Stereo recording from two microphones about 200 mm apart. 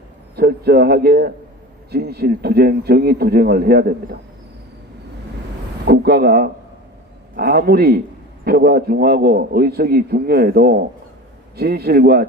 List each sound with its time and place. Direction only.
0.3 s a man's voice: 50° right (ahead or behind)
5.8 s a man's voice: 50° right (ahead or behind)